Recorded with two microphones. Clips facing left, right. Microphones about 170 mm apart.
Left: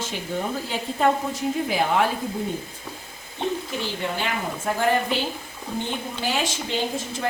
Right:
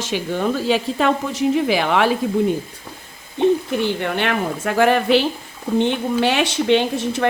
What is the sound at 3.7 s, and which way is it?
Speech, 55° right (ahead or behind).